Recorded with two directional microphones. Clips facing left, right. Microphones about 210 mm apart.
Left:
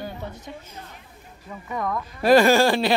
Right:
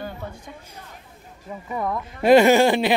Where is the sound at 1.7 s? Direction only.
15° right (ahead or behind).